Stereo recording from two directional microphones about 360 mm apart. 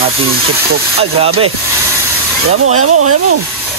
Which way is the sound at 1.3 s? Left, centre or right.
Right.